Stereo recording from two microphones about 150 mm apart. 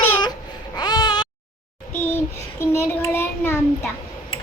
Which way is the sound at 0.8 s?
25° left (ahead or behind).